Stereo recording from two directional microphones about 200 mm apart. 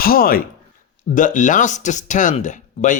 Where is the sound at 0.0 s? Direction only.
45° left (ahead or behind).